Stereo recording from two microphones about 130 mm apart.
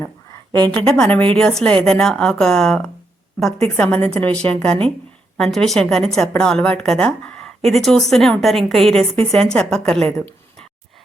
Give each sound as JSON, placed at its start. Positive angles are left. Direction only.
{"t": 0.6, "sound": "a woman's voice", "side_deg": -40}
{"t": 0.9, "sound": "a woman's voice", "side_deg": 5}